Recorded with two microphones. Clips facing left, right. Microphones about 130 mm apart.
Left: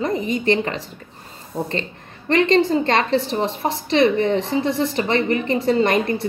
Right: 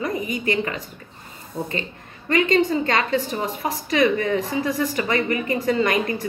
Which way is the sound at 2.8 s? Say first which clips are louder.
Left 3 dB; 30° left (ahead or behind).